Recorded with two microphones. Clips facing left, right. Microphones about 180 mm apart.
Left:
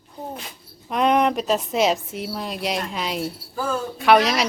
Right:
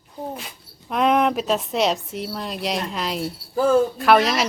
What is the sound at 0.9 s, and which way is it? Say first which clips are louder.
Speech: even; centre (ahead or behind).